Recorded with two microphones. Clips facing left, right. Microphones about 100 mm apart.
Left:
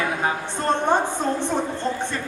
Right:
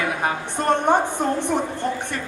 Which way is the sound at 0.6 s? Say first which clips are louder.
Right 2 dB; 15° right (ahead or behind).